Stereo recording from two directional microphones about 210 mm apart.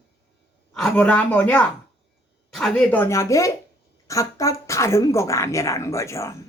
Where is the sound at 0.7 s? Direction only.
5° left (ahead or behind).